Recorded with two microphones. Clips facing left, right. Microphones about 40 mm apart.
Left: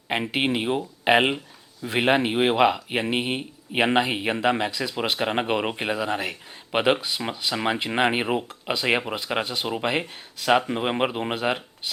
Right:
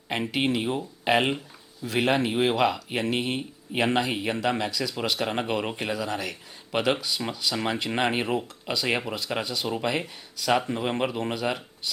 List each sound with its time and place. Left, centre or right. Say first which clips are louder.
0.1 s speech: left 2 dB; left